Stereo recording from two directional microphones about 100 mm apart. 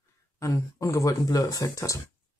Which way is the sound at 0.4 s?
30° left (ahead or behind).